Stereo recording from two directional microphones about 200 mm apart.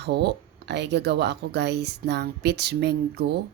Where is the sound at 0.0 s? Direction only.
55° right (ahead or behind).